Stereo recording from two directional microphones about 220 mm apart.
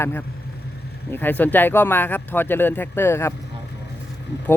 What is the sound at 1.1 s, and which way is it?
Speech, 10° left (ahead or behind).